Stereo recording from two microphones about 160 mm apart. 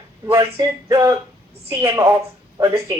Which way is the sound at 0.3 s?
20° right (ahead or behind).